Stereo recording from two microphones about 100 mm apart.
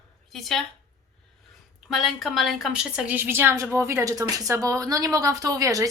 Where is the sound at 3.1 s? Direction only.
20° right (ahead or behind).